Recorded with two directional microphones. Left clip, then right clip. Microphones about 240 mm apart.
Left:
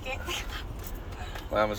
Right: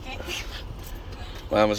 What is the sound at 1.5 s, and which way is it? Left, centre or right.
Speech, right.